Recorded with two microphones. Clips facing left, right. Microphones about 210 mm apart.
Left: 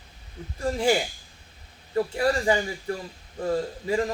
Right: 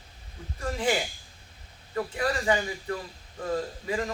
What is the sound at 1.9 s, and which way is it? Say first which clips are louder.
Speech: left 5 dB; 30° left (ahead or behind).